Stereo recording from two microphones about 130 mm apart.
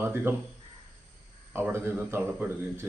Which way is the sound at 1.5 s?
20° right (ahead or behind).